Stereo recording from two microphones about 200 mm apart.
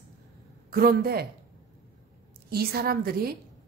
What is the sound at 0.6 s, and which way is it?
Speech, 50° right (ahead or behind).